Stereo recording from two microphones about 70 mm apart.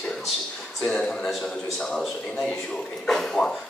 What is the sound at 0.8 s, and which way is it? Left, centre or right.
Speech, centre.